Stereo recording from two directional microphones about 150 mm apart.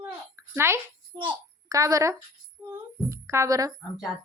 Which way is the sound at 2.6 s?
15° right (ahead or behind).